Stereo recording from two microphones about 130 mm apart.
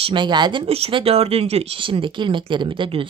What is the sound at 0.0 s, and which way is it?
Speech, 35° right (ahead or behind).